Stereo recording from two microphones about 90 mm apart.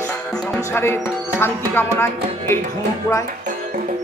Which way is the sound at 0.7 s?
25° left (ahead or behind).